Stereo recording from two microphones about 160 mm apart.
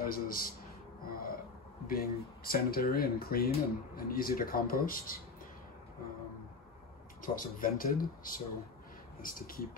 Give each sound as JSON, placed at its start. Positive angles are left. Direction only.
{"t": 0.0, "sound": "speech", "side_deg": 65}
{"t": 1.0, "sound": "a sound", "side_deg": 65}
{"t": 1.9, "sound": "speech", "side_deg": 65}
{"t": 7.2, "sound": "speech", "side_deg": 60}